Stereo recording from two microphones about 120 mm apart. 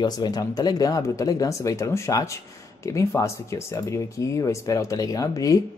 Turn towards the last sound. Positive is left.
turn(degrees=30)  # may be behind; listen again after turning